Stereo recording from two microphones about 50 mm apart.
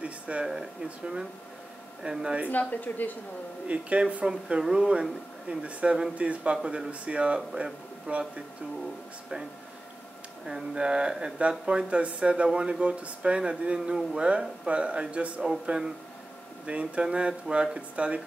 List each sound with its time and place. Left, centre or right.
0.0 s a sound: right
0.8 s speech: centre
2.5 s speech: left
3.6 s speech: right
10.4 s a sound: centre
11.4 s speech: right